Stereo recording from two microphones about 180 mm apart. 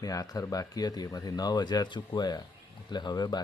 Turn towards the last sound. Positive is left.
turn(degrees=25)  # may be behind; listen again after turning